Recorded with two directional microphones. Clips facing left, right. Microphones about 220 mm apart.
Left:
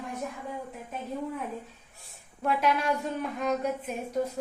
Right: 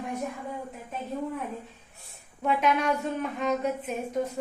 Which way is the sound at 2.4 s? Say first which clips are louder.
Right 1 dB; 10° left (ahead or behind).